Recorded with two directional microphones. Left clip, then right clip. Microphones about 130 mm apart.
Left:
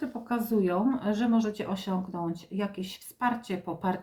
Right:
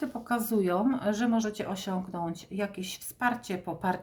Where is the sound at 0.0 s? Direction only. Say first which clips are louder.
Right 1 dB; 45° right (ahead or behind).